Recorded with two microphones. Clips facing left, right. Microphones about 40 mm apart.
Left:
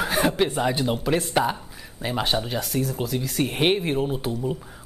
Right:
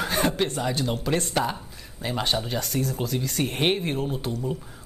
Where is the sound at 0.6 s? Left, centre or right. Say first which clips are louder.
Left 3 dB; centre.